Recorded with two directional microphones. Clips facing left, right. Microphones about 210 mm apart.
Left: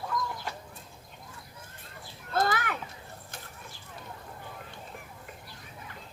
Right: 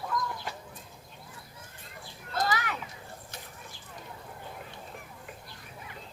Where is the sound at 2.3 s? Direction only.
50° left (ahead or behind).